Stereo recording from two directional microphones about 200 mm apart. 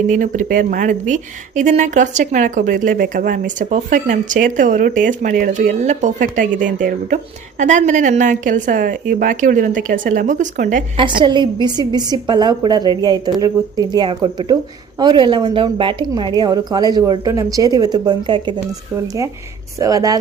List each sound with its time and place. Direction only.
0.1 s speech: 40° right (ahead or behind)
10.9 s a woman's voice: 25° right (ahead or behind)